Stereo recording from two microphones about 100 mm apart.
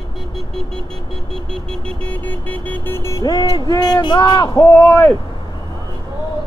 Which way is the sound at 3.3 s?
45° left (ahead or behind).